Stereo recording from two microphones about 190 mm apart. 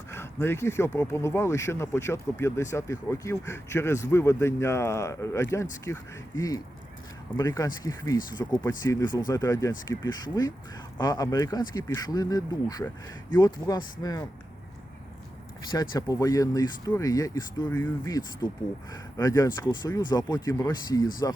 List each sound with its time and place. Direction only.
0.1 s a sound: 10° left (ahead or behind)
0.9 s speech: 15° left (ahead or behind)
15.7 s speech: 20° left (ahead or behind)